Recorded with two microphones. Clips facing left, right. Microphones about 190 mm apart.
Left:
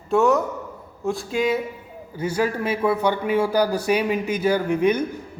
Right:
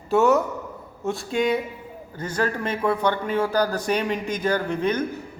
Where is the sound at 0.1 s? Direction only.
Centre (ahead or behind).